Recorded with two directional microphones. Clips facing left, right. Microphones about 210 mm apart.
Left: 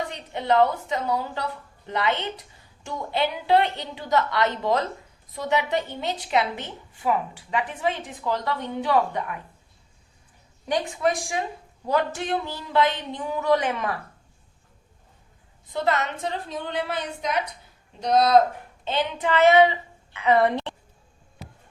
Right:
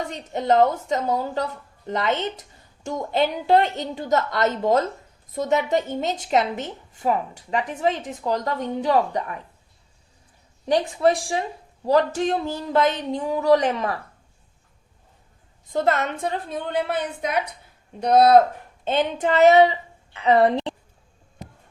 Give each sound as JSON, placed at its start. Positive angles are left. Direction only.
{"t": 0.1, "sound": "a woman's voice", "side_deg": -45}
{"t": 10.7, "sound": "speech", "side_deg": -35}
{"t": 15.6, "sound": "a woman's voice", "side_deg": -45}